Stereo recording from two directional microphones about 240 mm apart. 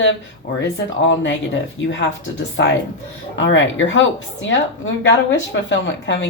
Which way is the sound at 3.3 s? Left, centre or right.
Left.